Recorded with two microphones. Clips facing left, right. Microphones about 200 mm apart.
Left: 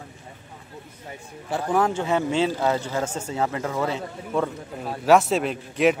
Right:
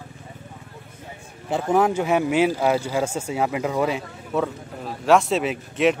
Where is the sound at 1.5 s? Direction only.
20° right (ahead or behind).